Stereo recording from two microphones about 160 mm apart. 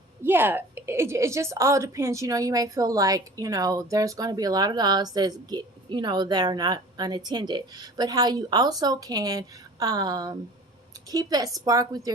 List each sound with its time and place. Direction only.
0.2 s a woman's voice: 15° right (ahead or behind)